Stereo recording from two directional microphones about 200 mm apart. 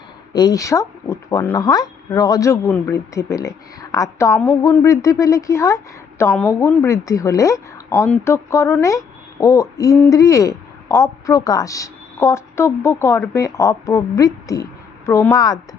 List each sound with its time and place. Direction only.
0.3 s speech: 20° left (ahead or behind)